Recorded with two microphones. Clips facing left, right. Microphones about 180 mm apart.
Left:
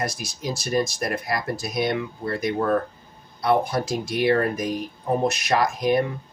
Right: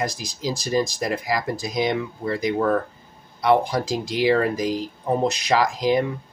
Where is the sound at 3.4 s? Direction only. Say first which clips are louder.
Right 2 dB; 90° right.